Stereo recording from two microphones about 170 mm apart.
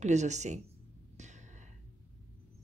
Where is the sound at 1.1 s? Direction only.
45° right (ahead or behind).